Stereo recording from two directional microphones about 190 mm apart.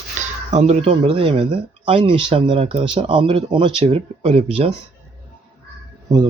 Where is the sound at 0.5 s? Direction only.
35° right (ahead or behind).